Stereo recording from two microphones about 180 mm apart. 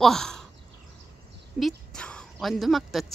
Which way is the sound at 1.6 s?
Centre (ahead or behind).